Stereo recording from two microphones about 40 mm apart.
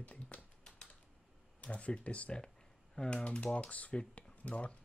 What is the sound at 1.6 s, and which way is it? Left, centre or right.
Speech, left.